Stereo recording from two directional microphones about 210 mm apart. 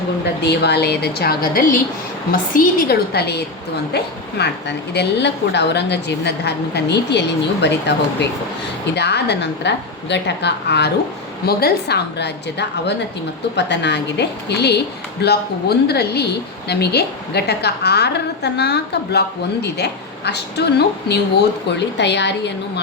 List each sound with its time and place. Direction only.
0.4 s a woman's voice: 55° left (ahead or behind)
9.0 s a woman's voice: 55° left (ahead or behind)